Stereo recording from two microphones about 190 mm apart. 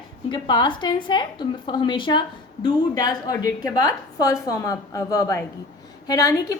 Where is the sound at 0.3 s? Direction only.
25° left (ahead or behind).